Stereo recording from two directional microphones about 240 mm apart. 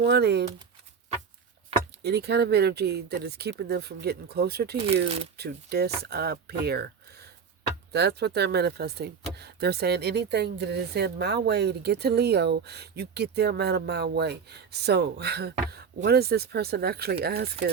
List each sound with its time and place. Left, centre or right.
0.1 s speech: right
2.0 s speech: right